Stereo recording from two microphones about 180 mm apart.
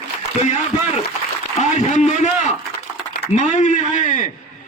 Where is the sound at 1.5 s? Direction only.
40° left (ahead or behind).